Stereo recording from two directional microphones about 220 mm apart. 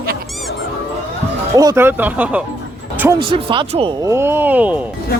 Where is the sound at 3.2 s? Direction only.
25° right (ahead or behind).